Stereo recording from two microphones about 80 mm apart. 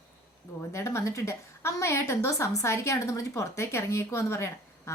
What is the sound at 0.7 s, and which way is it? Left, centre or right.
A woman's voice, left.